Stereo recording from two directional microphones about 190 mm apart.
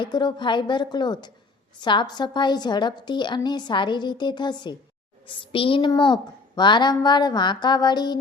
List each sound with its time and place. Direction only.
0.0 s a woman's voice: 20° left (ahead or behind)